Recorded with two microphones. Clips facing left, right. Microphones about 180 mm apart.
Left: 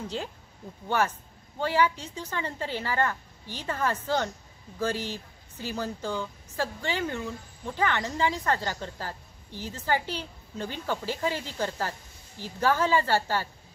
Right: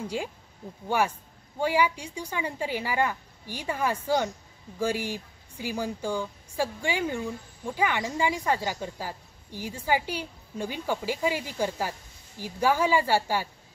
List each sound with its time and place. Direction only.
0.0 s speech: 10° right (ahead or behind)